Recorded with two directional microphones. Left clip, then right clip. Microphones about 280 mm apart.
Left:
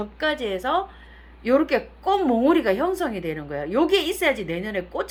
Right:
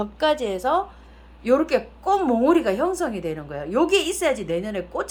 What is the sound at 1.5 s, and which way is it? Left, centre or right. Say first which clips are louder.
Speech: right 1 dB; centre.